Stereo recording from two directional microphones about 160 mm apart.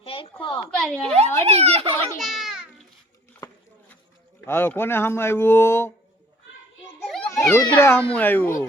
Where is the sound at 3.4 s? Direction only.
25° left (ahead or behind).